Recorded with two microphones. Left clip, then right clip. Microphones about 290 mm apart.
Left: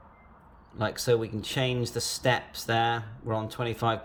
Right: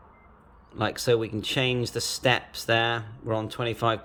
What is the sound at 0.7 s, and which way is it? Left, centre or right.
Speech, centre.